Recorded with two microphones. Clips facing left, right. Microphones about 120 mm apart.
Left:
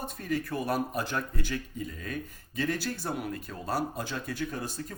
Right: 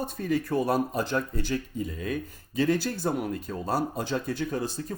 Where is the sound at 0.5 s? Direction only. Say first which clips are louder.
Right 6 dB; 35° right (ahead or behind).